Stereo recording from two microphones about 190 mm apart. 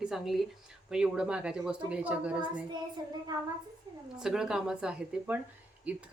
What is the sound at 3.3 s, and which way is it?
Speech, 20° right (ahead or behind).